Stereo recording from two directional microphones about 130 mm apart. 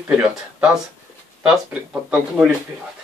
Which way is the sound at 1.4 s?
5° right (ahead or behind).